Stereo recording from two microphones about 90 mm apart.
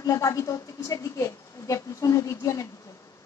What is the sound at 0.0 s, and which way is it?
A woman's voice, 35° left (ahead or behind).